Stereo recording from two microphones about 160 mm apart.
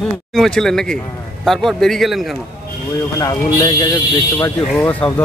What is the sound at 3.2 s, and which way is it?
Speech, 30° left (ahead or behind).